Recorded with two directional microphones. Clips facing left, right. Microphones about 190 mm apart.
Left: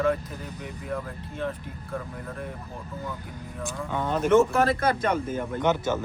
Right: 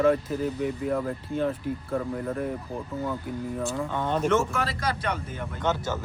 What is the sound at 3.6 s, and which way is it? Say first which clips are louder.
Speech: left 1 dB; 10° left (ahead or behind).